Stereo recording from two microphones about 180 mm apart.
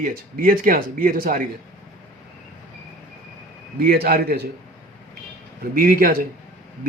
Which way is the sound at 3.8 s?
60° right (ahead or behind).